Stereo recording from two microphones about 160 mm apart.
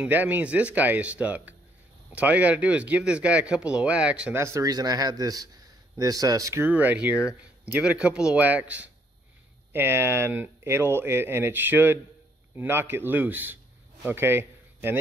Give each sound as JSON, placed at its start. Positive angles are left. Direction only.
{"t": 0.0, "sound": "a man's voice", "side_deg": -10}